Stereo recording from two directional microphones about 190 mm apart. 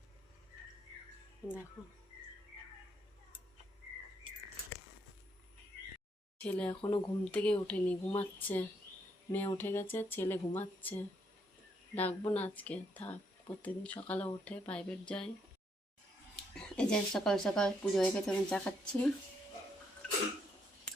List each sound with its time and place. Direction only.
1.4 s speech: 15° left (ahead or behind)
6.4 s speech: 10° left (ahead or behind)
16.3 s speech: 5° left (ahead or behind)